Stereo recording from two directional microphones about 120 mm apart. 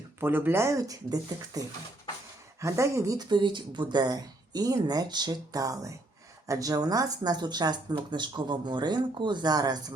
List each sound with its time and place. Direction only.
0.2 s speech: 15° right (ahead or behind); by 9.9 s 35° right (ahead or behind)